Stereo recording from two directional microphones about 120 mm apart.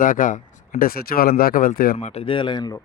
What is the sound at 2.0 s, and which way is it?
Speech, 60° left (ahead or behind).